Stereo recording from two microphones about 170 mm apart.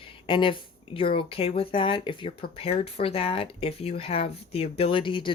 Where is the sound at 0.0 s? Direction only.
30° left (ahead or behind).